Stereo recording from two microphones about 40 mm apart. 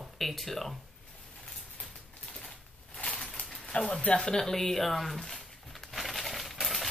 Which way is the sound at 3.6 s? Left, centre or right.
Left.